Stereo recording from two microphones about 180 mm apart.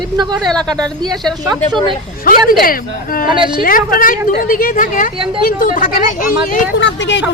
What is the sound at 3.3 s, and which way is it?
Speech, 25° right (ahead or behind).